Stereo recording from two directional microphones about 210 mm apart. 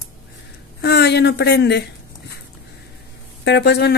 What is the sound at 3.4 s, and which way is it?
Speech, 55° left (ahead or behind).